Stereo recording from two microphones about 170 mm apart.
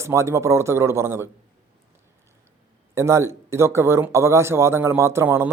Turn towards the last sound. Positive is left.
turn(degrees=-15)  # may be behind; listen again after turning